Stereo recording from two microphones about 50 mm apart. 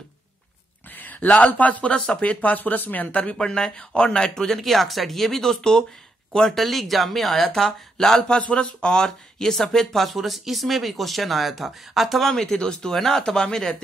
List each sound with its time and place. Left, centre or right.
0.9 s speech: left
2.0 s speech: centre
2.4 s speech: left
3.3 s speech: centre
4.5 s speech: centre
12.3 s speech: centre